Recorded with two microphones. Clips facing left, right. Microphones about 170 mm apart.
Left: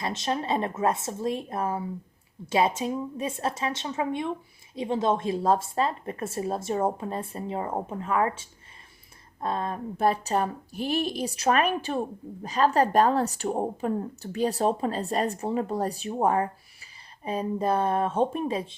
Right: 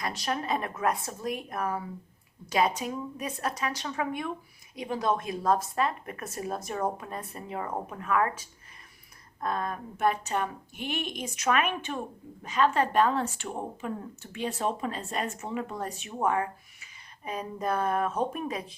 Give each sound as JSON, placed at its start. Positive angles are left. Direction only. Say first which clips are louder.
{"t": 0.0, "sound": "a woman's voice", "louder": "left 3 dB", "side_deg": 25}